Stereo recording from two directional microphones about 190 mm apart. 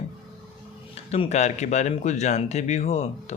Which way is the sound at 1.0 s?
35° left (ahead or behind).